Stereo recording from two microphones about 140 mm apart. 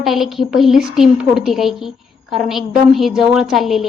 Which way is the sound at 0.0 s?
Centre (ahead or behind).